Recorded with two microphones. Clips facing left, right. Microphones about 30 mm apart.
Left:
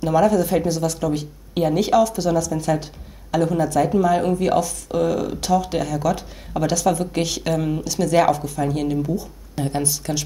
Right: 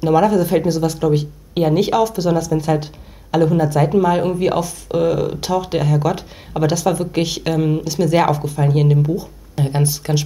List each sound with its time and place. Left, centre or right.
0.0 s speech: centre